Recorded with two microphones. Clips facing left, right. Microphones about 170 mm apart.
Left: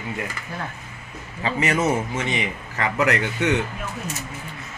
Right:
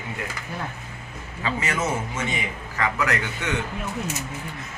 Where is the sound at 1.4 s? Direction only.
25° left (ahead or behind).